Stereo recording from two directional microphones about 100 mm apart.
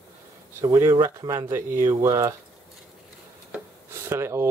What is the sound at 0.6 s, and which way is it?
Speech, 35° right (ahead or behind).